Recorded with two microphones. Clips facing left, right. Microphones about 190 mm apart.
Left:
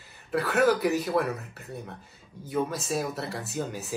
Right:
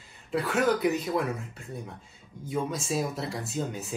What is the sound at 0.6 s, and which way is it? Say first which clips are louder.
Speech: left 2 dB; centre (ahead or behind).